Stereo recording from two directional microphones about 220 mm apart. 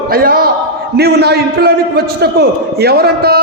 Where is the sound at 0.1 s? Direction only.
45° right (ahead or behind).